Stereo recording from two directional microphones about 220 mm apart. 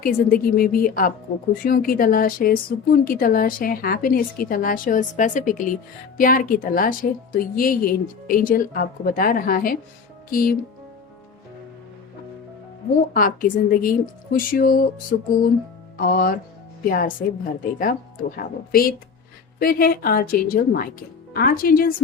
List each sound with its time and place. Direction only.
0.0 s speech: 40° left (ahead or behind)
13.1 s speech: 40° left (ahead or behind)